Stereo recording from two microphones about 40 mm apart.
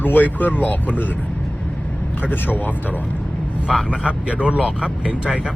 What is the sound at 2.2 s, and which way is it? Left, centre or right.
Speech, left.